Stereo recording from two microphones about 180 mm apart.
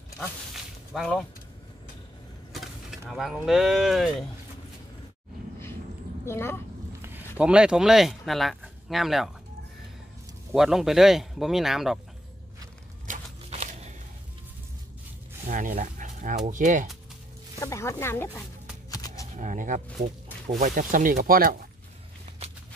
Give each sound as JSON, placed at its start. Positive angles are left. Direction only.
{"t": 0.9, "sound": "speech", "side_deg": 0}
{"t": 2.5, "sound": "speech", "side_deg": 0}
{"t": 6.2, "sound": "speech", "side_deg": 15}
{"t": 7.3, "sound": "speech", "side_deg": -5}
{"t": 10.5, "sound": "speech", "side_deg": 0}
{"t": 13.0, "sound": "a sound", "side_deg": -40}
{"t": 15.4, "sound": "dog", "side_deg": -50}
{"t": 17.6, "sound": "speech", "side_deg": 15}
{"t": 18.9, "sound": "a sound", "side_deg": 20}
{"t": 19.3, "sound": "speech", "side_deg": -45}